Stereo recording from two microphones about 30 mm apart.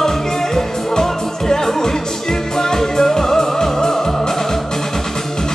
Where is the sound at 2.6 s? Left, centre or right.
Centre.